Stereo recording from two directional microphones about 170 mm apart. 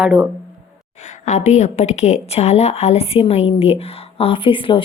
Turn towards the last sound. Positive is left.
turn(degrees=30)  # may be behind; listen again after turning